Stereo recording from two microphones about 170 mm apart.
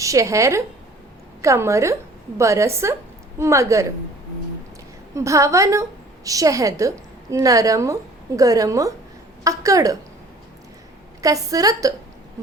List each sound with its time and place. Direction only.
0.0 s a woman's voice: 20° right (ahead or behind)
5.1 s a woman's voice: 20° right (ahead or behind)
11.2 s a woman's voice: 20° right (ahead or behind)